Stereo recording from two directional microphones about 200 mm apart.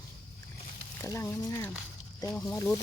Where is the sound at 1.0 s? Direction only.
15° left (ahead or behind).